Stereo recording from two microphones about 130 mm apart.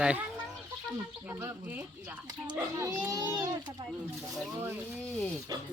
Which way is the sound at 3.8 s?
40° right (ahead or behind).